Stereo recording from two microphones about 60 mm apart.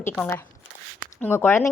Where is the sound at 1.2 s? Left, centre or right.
Left.